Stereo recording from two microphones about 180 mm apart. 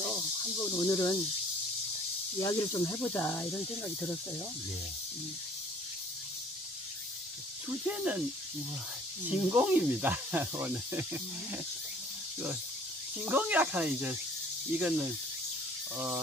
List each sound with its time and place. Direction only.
0.7 s speech: 15° left (ahead or behind)
2.4 s speech: 20° left (ahead or behind)
7.9 s speech: 5° right (ahead or behind)
9.3 s speech: 10° right (ahead or behind)
13.2 s speech: 10° right (ahead or behind)